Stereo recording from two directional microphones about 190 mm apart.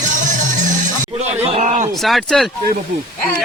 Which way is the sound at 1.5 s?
40° right (ahead or behind).